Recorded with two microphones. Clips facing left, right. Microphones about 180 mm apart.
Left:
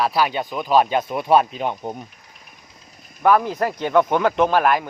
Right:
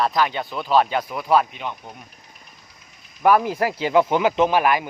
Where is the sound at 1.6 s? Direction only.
50° left (ahead or behind).